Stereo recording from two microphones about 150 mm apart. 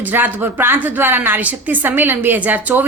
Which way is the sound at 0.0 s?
10° right (ahead or behind).